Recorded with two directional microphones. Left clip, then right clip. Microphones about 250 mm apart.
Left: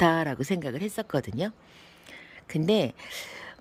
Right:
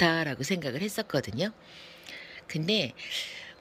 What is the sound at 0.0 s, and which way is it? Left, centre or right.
A woman's voice, centre.